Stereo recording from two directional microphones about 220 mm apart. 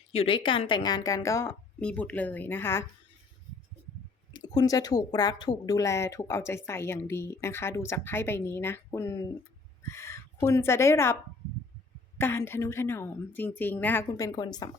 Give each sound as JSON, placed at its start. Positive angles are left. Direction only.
{"t": 0.1, "sound": "a woman's voice", "side_deg": 25}
{"t": 4.3, "sound": "a woman's voice", "side_deg": 20}